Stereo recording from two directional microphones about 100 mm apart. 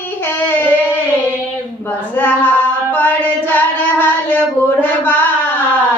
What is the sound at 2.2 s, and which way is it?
Female singing, 20° left (ahead or behind).